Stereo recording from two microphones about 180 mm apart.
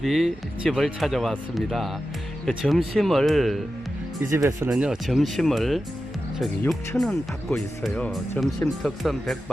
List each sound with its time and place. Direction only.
0.0 s speech: centre (ahead or behind)
4.3 s speech: 15° right (ahead or behind)
4.7 s speech: centre (ahead or behind)